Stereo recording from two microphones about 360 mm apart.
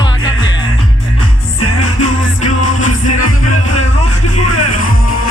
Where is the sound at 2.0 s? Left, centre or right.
Left.